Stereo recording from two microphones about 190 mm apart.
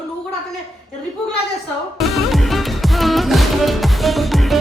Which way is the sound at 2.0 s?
Centre (ahead or behind).